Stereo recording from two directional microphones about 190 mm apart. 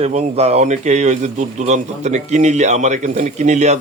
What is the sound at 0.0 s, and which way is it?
Speech, 35° right (ahead or behind).